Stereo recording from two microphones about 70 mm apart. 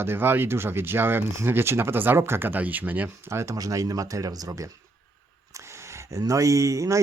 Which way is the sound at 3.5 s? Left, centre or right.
Right.